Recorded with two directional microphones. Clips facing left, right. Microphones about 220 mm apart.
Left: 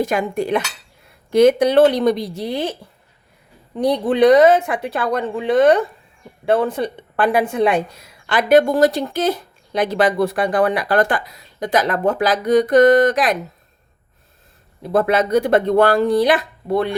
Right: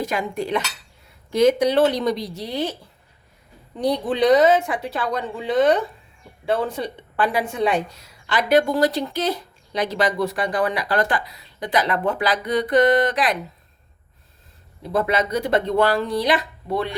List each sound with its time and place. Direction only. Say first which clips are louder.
0.0 s a woman's voice: left 5 dB; 50° left (ahead or behind)
3.8 s a woman's voice: left 5 dB; 55° left (ahead or behind)
14.9 s a woman's voice: left 6 dB; 50° left (ahead or behind)